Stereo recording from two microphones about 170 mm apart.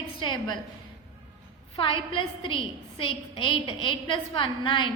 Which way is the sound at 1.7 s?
30° left (ahead or behind).